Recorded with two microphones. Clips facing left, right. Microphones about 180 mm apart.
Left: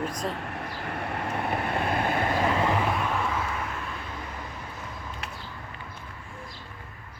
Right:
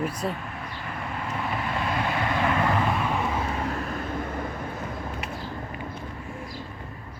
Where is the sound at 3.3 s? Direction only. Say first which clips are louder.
Right 3 dB; 30° right (ahead or behind); by 4.5 s 50° right (ahead or behind).